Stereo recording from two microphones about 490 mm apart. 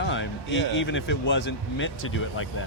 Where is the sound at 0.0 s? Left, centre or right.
Left.